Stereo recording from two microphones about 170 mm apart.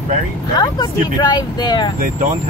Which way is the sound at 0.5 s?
25° left (ahead or behind).